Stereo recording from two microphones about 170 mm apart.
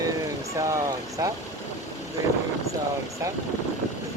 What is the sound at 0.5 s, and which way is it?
Speech, 20° right (ahead or behind).